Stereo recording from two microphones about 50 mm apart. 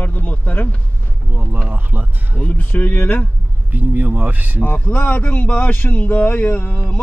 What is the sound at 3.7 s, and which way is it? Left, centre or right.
Speech, right.